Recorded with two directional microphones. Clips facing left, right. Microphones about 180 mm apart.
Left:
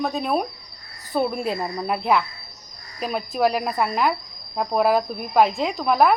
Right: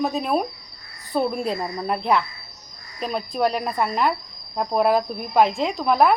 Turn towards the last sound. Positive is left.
turn(degrees=0)  # may be behind; listen again after turning